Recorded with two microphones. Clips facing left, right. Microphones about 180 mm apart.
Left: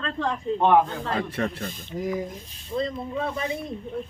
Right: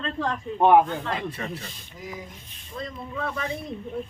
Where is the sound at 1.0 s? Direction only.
35° left (ahead or behind).